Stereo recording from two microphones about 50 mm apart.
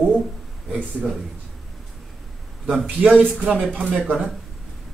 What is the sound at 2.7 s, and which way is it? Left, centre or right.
Speech, right.